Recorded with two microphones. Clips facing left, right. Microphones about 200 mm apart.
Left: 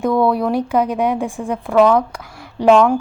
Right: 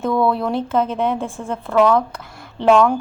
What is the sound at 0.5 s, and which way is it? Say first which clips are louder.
Speech: left 2 dB; 15° left (ahead or behind).